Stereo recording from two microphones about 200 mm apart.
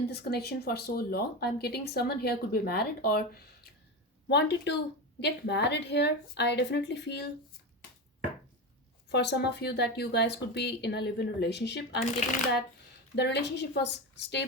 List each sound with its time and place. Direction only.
0.1 s speech: 50° left (ahead or behind)
9.0 s speech: 55° left (ahead or behind)
13.1 s speech: 60° left (ahead or behind)